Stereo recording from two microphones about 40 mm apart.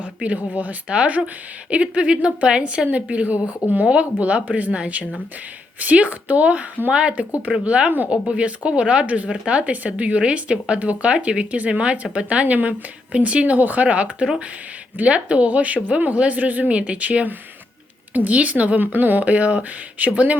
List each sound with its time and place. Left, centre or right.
0.0 s a woman's voice: right
3.8 s a woman's voice: right
9.0 s a woman's voice: right
13.6 s speech: right
13.8 s a woman's voice: right
16.7 s a woman's voice: right
18.8 s speech: right
19.2 s a woman's voice: right